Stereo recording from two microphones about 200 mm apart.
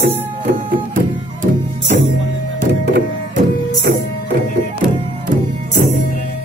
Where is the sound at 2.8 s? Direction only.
50° right (ahead or behind).